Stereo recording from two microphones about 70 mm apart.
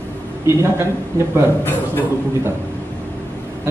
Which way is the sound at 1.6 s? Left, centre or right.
Left.